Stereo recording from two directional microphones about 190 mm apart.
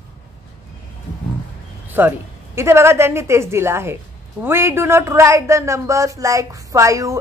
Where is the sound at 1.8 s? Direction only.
10° right (ahead or behind).